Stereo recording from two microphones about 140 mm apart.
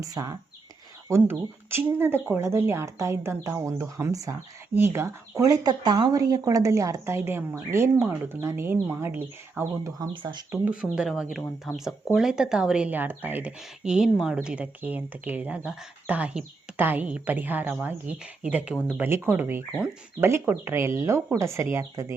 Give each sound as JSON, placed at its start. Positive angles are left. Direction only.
{"t": 0.0, "sound": "speech", "side_deg": -25}
{"t": 10.1, "sound": "speech", "side_deg": -30}
{"t": 10.5, "sound": "speech", "side_deg": -10}